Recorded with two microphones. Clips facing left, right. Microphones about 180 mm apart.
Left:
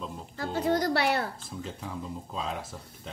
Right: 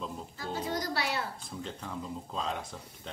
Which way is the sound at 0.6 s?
65° left (ahead or behind).